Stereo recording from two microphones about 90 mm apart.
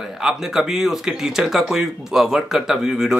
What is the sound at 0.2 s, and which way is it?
A man's voice, 5° right (ahead or behind).